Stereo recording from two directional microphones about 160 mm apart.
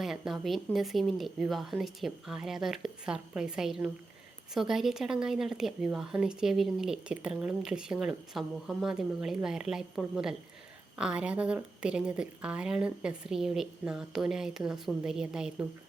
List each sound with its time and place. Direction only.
0.0 s a woman's voice: centre (ahead or behind)